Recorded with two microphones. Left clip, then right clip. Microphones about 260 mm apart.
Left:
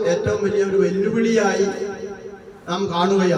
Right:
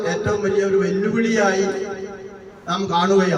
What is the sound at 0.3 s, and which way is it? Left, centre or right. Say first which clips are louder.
A man's voice: right 1 dB; centre.